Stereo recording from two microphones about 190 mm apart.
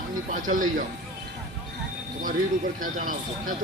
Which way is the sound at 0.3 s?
45° right (ahead or behind).